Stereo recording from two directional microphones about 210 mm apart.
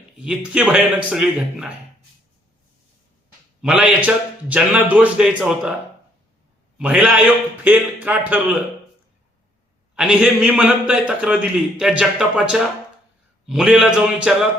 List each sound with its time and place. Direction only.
0.2 s a man's voice: 5° right (ahead or behind)
3.6 s a man's voice: 5° right (ahead or behind)
6.7 s a man's voice: 5° right (ahead or behind)
9.9 s a man's voice: 5° right (ahead or behind)